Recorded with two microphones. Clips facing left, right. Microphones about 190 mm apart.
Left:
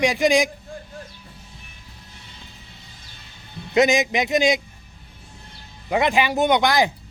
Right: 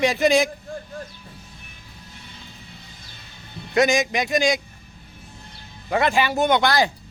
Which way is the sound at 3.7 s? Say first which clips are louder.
Left 1 dB; 20° left (ahead or behind).